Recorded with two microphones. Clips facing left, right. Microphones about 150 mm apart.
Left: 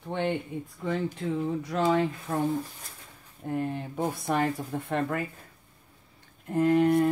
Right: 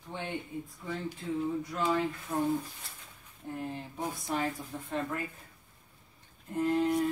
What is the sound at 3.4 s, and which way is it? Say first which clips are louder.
Speech: left 7 dB; 60° left (ahead or behind).